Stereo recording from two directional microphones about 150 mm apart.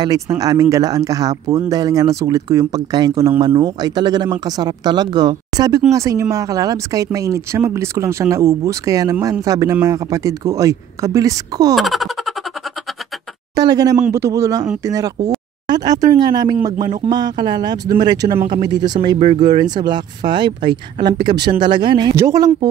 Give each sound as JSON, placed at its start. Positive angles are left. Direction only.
{"t": 0.0, "sound": "speech", "side_deg": -25}
{"t": 11.7, "sound": "baby laughter", "side_deg": 0}
{"t": 13.6, "sound": "speech", "side_deg": -25}
{"t": 19.1, "sound": "speech", "side_deg": -45}
{"t": 19.7, "sound": "speech", "side_deg": -30}
{"t": 22.1, "sound": "speech", "side_deg": -20}